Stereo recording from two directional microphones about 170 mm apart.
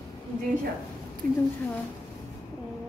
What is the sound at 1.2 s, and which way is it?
Speech, 55° right (ahead or behind).